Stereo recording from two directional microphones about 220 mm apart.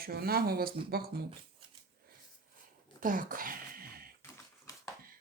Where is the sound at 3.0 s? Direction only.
40° right (ahead or behind).